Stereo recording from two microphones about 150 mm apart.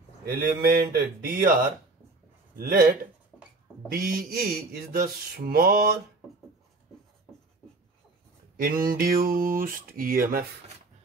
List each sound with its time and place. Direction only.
0.2 s speech: 90° right
2.5 s mantra: 80° right
8.6 s mantra: 75° right (ahead or behind)